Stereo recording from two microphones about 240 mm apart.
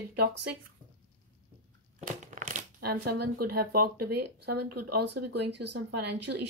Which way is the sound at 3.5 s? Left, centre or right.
Right.